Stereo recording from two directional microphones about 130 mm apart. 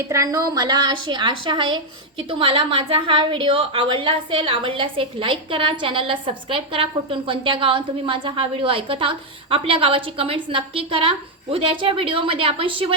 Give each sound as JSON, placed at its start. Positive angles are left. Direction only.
{"t": 0.0, "sound": "a woman's voice", "side_deg": -25}